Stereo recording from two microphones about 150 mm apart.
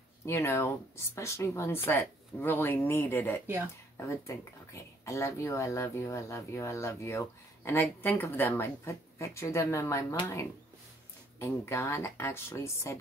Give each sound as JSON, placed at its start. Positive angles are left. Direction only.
{"t": 0.2, "sound": "speech", "side_deg": 20}
{"t": 11.3, "sound": "speech", "side_deg": 15}